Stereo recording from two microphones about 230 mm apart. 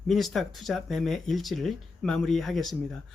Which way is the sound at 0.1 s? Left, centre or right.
Centre.